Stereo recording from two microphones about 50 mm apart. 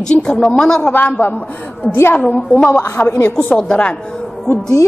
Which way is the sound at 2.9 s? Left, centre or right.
Left.